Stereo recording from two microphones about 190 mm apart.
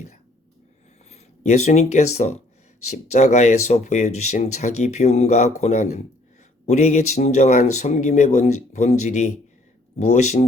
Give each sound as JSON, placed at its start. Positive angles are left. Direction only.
{"t": 1.1, "sound": "speech", "side_deg": 35}